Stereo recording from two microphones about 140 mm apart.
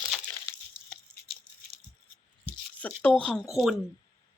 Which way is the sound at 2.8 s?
10° left (ahead or behind).